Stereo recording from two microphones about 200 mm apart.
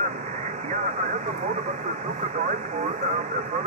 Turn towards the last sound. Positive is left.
turn(degrees=-40)  # may be behind; listen again after turning